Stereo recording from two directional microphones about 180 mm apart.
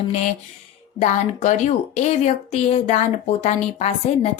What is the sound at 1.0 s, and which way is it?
A woman's voice, 40° left (ahead or behind).